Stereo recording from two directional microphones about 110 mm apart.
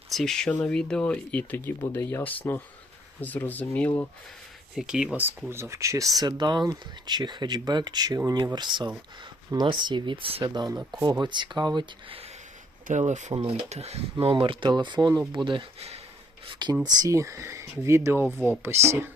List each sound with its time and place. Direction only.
0.1 s speech: centre (ahead or behind)
4.7 s speech: 5° right (ahead or behind)
5.5 s speech: 25° right (ahead or behind); by 10.4 s 55° right (ahead or behind)
10.4 s speech: 40° right (ahead or behind); by 12.3 s 55° right (ahead or behind)
12.9 s speech: 90° right
13.3 s speech: 50° right (ahead or behind)
13.7 s speech: 75° right (ahead or behind); by 19.1 s 20° right (ahead or behind)